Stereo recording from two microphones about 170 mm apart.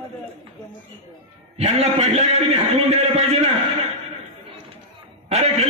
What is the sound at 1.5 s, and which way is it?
A man's voice, 40° right (ahead or behind).